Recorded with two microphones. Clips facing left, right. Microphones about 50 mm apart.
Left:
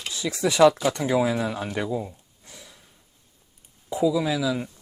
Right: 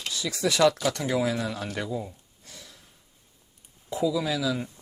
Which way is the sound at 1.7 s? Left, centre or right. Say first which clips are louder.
Left 4 dB; centre.